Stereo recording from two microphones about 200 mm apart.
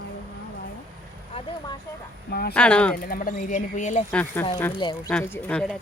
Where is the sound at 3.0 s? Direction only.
45° left (ahead or behind).